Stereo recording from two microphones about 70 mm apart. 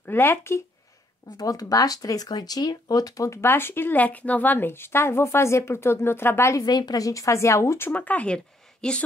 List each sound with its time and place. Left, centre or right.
0.0 s speech: left
1.3 s speech: left
3.3 s speech: left
6.6 s a woman's voice: left
7.9 s speech: left
8.8 s a woman's voice: centre